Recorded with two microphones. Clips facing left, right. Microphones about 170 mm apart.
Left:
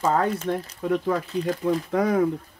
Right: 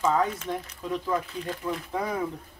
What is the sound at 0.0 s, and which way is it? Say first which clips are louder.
Speech: left 3 dB; 60° left (ahead or behind).